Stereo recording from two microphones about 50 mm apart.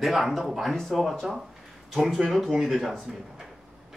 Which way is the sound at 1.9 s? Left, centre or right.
Centre.